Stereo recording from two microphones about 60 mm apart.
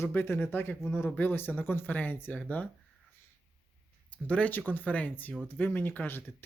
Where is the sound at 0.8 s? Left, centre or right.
Centre.